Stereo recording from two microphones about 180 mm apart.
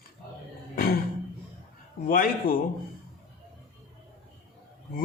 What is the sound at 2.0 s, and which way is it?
Speech, 50° left (ahead or behind).